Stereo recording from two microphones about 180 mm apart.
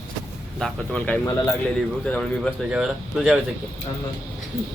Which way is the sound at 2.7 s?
5° right (ahead or behind).